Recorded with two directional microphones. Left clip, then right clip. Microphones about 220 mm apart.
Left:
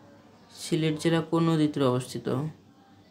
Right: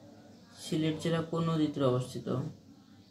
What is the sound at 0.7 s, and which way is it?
Speech, 50° left (ahead or behind).